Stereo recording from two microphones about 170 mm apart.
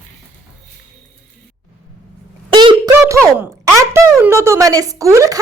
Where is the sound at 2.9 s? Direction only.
15° right (ahead or behind).